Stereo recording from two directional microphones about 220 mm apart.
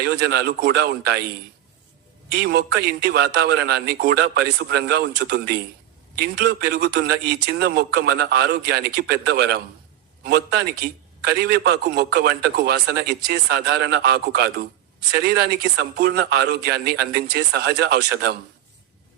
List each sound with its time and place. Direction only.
0.0 s a man's voice: 50° right (ahead or behind)
2.3 s a man's voice: 50° right (ahead or behind)